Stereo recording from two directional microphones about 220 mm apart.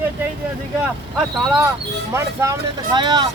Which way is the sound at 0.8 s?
5° right (ahead or behind).